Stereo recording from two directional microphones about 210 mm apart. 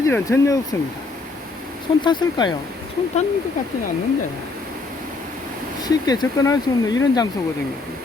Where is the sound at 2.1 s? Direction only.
20° left (ahead or behind).